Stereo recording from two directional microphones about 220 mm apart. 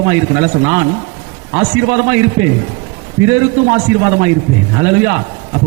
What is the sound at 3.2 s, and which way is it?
A man's voice, 15° right (ahead or behind).